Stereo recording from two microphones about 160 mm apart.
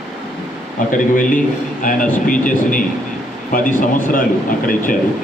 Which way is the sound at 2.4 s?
55° left (ahead or behind).